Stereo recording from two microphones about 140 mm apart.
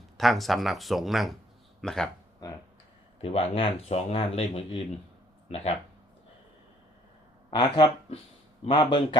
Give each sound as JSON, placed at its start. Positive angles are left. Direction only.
{"t": 0.2, "sound": "speech", "side_deg": 0}
{"t": 3.2, "sound": "speech", "side_deg": 40}
{"t": 7.5, "sound": "speech", "side_deg": 35}